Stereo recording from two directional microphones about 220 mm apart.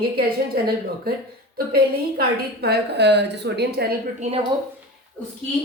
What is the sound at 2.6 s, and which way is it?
A woman's voice, 50° right (ahead or behind).